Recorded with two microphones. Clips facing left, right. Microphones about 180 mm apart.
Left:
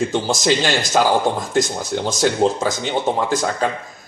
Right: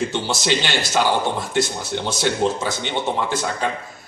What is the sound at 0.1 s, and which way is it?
Speech, 40° left (ahead or behind).